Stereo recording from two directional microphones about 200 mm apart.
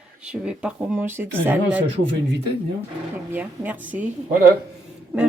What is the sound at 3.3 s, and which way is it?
Speech, 10° right (ahead or behind).